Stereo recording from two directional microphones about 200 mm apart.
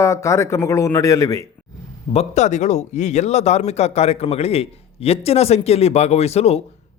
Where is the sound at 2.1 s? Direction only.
35° left (ahead or behind).